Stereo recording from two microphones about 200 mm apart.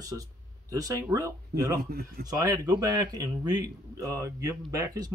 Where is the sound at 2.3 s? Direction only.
20° right (ahead or behind).